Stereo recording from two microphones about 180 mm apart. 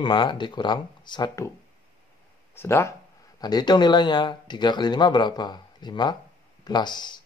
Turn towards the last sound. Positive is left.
turn(degrees=25)  # may be behind; listen again after turning